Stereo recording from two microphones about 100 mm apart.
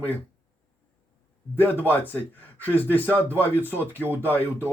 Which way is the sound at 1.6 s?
20° left (ahead or behind).